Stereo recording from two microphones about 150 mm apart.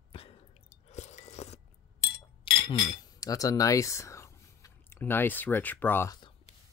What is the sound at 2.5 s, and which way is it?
Chink, 35° left (ahead or behind).